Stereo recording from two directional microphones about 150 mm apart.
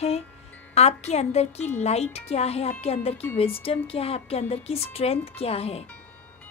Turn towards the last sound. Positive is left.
turn(degrees=40)  # may be behind; listen again after turning